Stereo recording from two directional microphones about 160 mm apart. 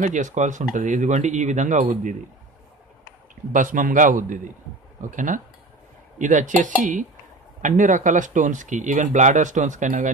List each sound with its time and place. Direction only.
0.0 s speech: 50° right (ahead or behind)
3.5 s a man's voice: 55° right (ahead or behind)